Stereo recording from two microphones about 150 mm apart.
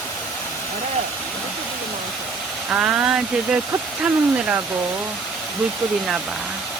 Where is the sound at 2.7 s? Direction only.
5° right (ahead or behind).